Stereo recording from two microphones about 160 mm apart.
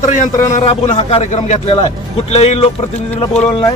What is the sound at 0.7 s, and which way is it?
A man's voice, 40° left (ahead or behind).